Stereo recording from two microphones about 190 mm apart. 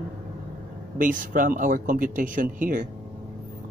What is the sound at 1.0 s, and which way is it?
Speech, 45° right (ahead or behind).